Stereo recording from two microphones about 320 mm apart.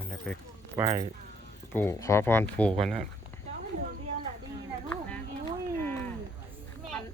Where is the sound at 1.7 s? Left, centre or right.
Centre.